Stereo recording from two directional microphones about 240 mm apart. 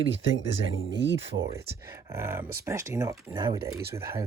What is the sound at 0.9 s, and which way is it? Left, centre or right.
Speech, right.